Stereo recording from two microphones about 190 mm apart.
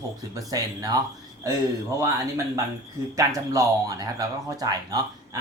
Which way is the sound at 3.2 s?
15° right (ahead or behind).